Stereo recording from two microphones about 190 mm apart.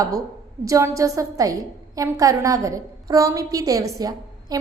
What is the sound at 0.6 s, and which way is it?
A woman's voice, 15° right (ahead or behind).